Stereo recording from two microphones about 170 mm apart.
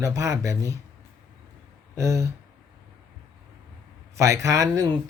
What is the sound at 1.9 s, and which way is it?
Speech, 15° right (ahead or behind).